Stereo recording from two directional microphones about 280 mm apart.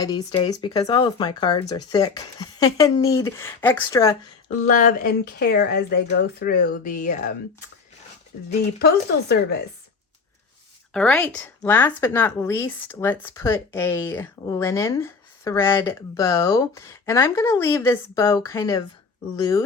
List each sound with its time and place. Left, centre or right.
0.0 s speech: centre
4.4 s speech: left
10.9 s speech: centre